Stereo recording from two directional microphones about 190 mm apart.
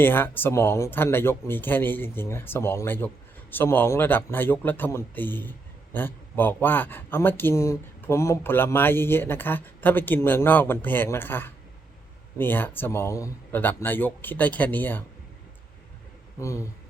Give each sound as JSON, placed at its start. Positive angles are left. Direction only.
{"t": 0.0, "sound": "a man's voice", "side_deg": 10}
{"t": 16.4, "sound": "a man's voice", "side_deg": 15}